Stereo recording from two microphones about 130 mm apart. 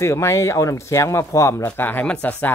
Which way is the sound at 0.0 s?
20° left (ahead or behind).